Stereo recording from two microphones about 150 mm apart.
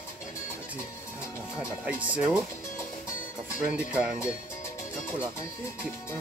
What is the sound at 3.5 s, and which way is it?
Speech, 5° right (ahead or behind).